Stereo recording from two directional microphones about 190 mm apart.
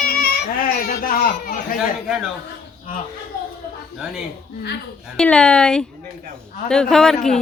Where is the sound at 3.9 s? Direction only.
5° right (ahead or behind).